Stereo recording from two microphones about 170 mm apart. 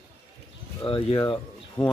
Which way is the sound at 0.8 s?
30° left (ahead or behind).